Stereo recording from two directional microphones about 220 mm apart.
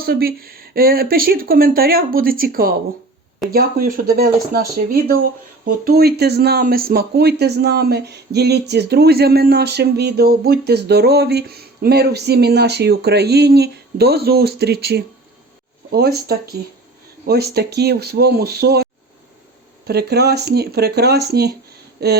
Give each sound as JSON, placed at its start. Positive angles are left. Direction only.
{"t": 0.0, "sound": "speech", "side_deg": -45}